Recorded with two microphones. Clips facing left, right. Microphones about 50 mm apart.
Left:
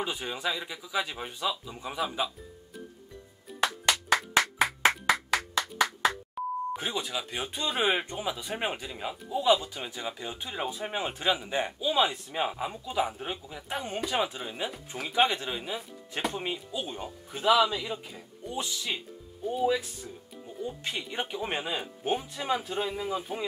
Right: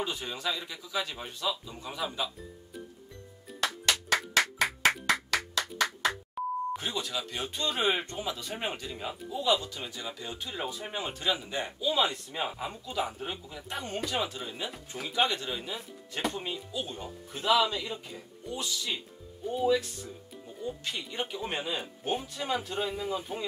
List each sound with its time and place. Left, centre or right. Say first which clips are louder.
0.0 s speech: left 2 dB; centre
4.1 s music: left 2 dB; centre
5.6 s music: left 4 dB; centre
6.8 s speech: left 1 dB; centre
18.5 s speech: left 1 dB; left
19.4 s speech: even; centre
20.9 s speech: left 2 dB; left